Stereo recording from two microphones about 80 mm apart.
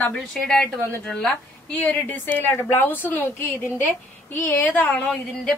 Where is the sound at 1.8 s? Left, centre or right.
Left.